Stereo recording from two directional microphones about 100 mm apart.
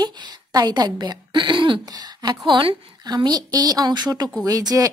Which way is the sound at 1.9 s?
45° right (ahead or behind).